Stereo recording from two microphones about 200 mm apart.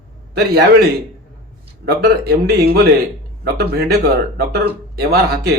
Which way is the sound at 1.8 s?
50° right (ahead or behind).